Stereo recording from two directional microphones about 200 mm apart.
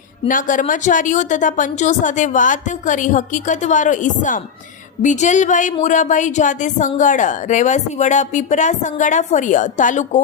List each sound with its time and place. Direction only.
0.3 s a woman's voice: 40° left (ahead or behind)